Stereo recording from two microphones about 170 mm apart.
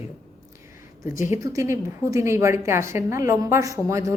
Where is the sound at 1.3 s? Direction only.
15° right (ahead or behind).